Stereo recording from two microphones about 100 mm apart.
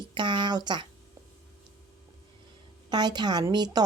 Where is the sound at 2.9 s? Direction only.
45° right (ahead or behind).